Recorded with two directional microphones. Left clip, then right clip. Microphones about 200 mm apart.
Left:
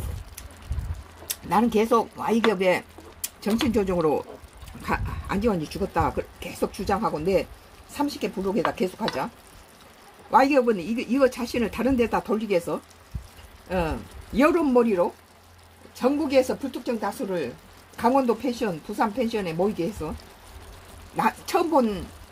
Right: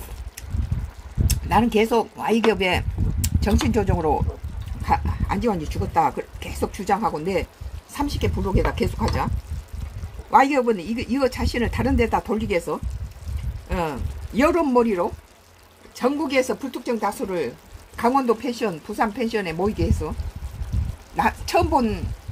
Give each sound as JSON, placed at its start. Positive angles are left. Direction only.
{"t": 1.5, "sound": "speech", "side_deg": -30}
{"t": 4.8, "sound": "speech", "side_deg": -10}
{"t": 7.9, "sound": "speech", "side_deg": -30}
{"t": 10.3, "sound": "speech", "side_deg": -15}
{"t": 21.2, "sound": "speech", "side_deg": -30}